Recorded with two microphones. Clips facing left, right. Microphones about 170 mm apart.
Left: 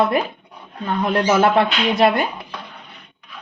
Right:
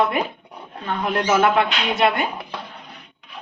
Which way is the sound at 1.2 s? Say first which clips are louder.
Left 2 dB; 35° left (ahead or behind).